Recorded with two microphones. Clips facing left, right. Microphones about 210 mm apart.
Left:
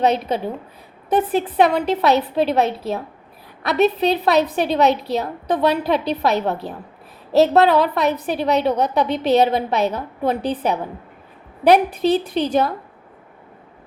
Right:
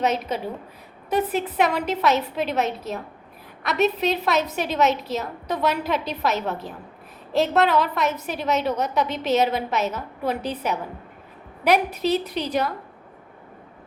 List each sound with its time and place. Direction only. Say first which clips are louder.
0.0 s a woman's voice: left 5 dB; 30° left (ahead or behind)